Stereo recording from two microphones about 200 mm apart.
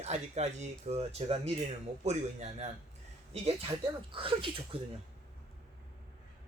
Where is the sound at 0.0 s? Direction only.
35° right (ahead or behind).